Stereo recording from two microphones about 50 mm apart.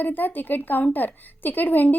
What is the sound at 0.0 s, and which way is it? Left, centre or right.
A woman's voice, left.